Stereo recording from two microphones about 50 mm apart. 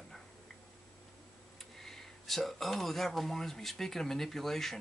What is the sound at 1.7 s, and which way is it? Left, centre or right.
Speech, centre.